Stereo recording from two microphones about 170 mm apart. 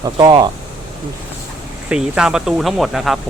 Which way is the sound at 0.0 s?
25° right (ahead or behind).